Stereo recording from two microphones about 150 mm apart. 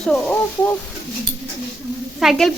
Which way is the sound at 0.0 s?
5° left (ahead or behind).